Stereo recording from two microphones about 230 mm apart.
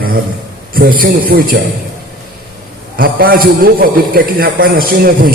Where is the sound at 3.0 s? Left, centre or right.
Right.